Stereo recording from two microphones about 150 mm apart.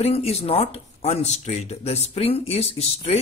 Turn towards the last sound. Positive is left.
turn(degrees=40)  # may be behind; listen again after turning